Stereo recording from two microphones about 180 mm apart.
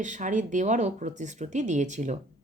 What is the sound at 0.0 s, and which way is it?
A woman's voice, 45° right (ahead or behind).